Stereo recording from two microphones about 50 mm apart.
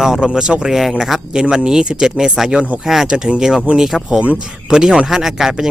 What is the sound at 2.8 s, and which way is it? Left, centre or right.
Speech, centre.